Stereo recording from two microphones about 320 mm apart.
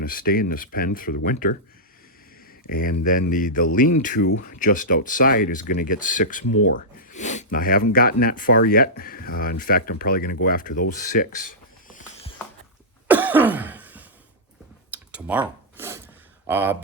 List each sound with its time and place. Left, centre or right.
0.0 s speech: left
2.6 s speech: left
10.9 s a sound: left
13.1 s throat clearing: centre
14.9 s a sound: centre
16.5 s speech: centre